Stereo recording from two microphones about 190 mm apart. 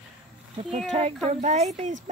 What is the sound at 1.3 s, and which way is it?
Speech, 35° right (ahead or behind).